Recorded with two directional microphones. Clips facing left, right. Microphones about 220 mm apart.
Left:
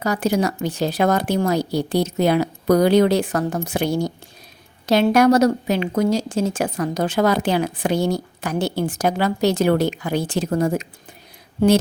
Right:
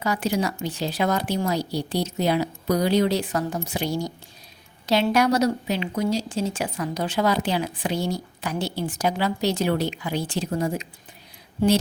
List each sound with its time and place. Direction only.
0.0 s a woman's voice: 45° left (ahead or behind)